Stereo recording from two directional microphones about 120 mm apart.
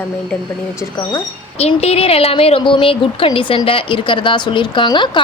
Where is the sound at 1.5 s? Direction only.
60° left (ahead or behind).